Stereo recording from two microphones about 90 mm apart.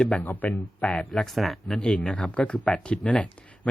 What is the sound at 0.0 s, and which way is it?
Speech, 15° left (ahead or behind).